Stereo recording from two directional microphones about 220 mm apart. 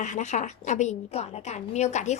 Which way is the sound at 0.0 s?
35° left (ahead or behind).